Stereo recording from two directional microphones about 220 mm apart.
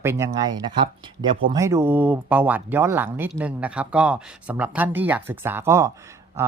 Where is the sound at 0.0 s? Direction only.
10° right (ahead or behind).